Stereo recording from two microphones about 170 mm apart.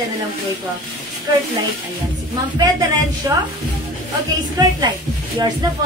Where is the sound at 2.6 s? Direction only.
20° right (ahead or behind).